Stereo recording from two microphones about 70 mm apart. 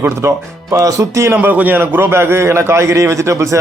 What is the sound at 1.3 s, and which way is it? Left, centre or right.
Speech, right.